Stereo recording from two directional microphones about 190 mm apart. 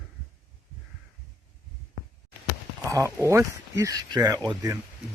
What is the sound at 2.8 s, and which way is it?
Speech, 15° right (ahead or behind).